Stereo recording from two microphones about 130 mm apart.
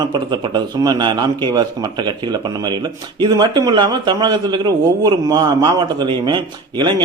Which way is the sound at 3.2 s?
35° right (ahead or behind).